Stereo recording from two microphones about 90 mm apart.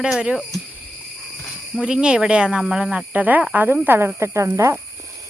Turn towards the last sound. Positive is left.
turn(degrees=-30)  # may be behind; listen again after turning